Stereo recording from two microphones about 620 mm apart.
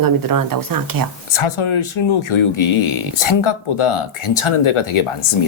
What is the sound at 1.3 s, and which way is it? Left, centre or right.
Speech, left.